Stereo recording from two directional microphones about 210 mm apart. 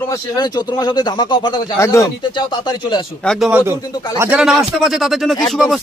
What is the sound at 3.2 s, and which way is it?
A man's voice, centre (ahead or behind).